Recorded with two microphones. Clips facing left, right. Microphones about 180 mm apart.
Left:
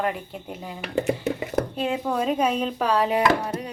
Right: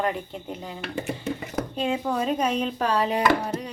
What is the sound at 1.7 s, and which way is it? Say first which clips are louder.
A woman's voice: left 1 dB; 5° left (ahead or behind).